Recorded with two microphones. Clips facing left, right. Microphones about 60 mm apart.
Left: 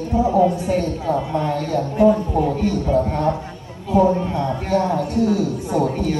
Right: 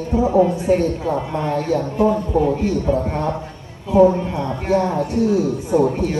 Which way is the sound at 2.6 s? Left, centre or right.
Right.